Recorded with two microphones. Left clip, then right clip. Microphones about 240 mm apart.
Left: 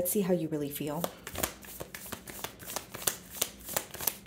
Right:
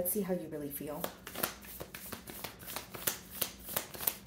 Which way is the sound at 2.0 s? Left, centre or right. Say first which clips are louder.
Left 4 dB; left.